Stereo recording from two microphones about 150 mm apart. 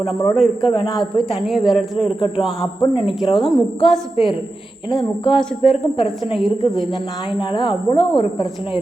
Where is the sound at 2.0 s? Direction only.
40° left (ahead or behind).